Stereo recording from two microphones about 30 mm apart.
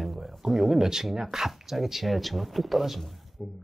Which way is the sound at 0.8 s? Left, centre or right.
Centre.